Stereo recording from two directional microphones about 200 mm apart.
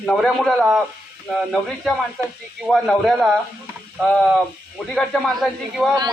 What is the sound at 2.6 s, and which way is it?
A man's voice, centre (ahead or behind).